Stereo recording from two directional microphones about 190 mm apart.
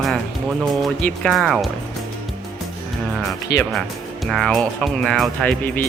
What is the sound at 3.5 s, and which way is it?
Speech, 65° left (ahead or behind).